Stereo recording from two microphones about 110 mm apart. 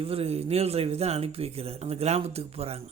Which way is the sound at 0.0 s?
60° right (ahead or behind).